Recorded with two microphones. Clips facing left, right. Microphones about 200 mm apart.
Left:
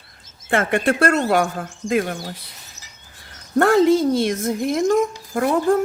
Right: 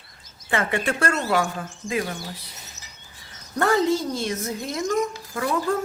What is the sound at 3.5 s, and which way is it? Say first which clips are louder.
Speech: left 6 dB; 55° left (ahead or behind).